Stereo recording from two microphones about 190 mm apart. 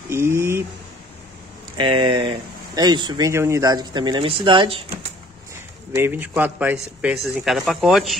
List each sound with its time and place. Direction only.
0.1 s speech: 15° right (ahead or behind)
1.8 s speech: 25° right (ahead or behind)
5.9 s speech: 10° right (ahead or behind)